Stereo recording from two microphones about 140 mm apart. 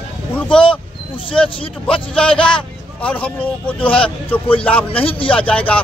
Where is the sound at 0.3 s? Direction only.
10° left (ahead or behind).